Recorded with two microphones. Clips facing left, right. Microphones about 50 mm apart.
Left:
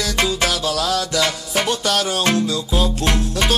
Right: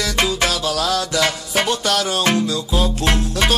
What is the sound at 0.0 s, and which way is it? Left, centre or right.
Music, right.